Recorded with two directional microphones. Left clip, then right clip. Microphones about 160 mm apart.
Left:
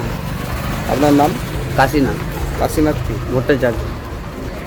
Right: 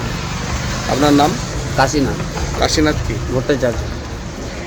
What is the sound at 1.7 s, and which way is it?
A woman's voice, 10° left (ahead or behind).